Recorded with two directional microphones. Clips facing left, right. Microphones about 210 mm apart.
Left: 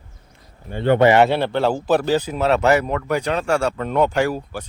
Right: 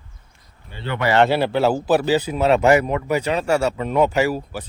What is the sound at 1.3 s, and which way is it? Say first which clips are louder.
Speech: right 1 dB; 5° right (ahead or behind).